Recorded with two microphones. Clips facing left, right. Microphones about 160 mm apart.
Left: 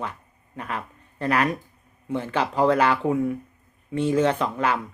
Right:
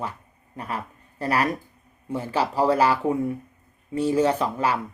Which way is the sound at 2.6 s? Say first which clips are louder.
Left 1 dB; 35° right (ahead or behind).